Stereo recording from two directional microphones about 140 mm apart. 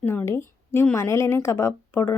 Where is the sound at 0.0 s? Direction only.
15° left (ahead or behind).